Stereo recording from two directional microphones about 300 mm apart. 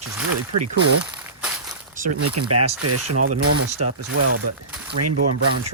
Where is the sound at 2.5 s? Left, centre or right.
Right.